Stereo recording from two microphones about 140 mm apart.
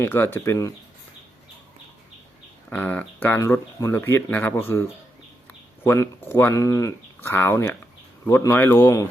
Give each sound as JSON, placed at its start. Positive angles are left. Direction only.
{"t": 0.0, "sound": "speech", "side_deg": 15}
{"t": 2.6, "sound": "speech", "side_deg": 15}